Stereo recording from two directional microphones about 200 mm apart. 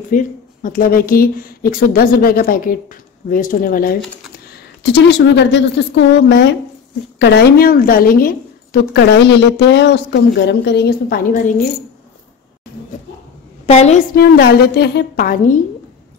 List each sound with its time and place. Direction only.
0.1 s a woman's voice: 40° left (ahead or behind)
4.9 s a woman's voice: 60° left (ahead or behind); by 11.5 s 45° left (ahead or behind)
13.7 s a woman's voice: 35° left (ahead or behind)
14.1 s a woman's voice: 50° left (ahead or behind)